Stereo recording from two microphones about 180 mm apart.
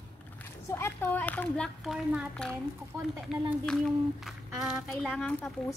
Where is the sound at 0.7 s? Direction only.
15° left (ahead or behind).